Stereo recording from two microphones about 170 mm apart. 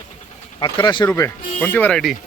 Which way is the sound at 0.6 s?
25° left (ahead or behind).